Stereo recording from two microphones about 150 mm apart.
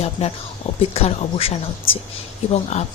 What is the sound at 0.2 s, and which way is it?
A woman's voice, 45° left (ahead or behind).